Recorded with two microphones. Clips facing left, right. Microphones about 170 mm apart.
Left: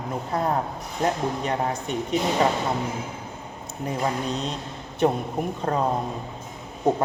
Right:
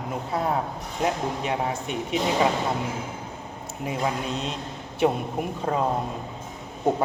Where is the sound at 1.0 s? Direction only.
5° right (ahead or behind).